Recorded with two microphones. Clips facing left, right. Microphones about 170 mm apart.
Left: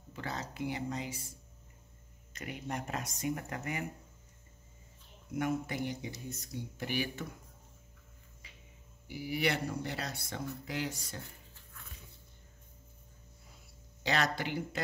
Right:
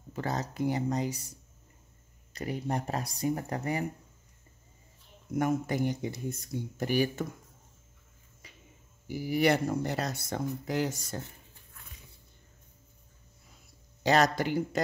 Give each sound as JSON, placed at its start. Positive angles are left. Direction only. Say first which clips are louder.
{"t": 0.1, "sound": "speech", "louder": "right 7 dB", "side_deg": -40}
{"t": 2.3, "sound": "speech", "louder": "right 7 dB", "side_deg": -35}
{"t": 5.3, "sound": "speech", "louder": "right 5 dB", "side_deg": -45}
{"t": 9.0, "sound": "speech", "louder": "right 7 dB", "side_deg": -45}
{"t": 14.0, "sound": "speech", "louder": "right 7 dB", "side_deg": -40}